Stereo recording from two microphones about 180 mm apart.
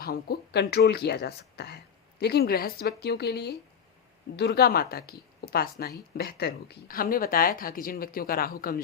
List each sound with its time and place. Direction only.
0.0 s a woman's voice: 60° left (ahead or behind)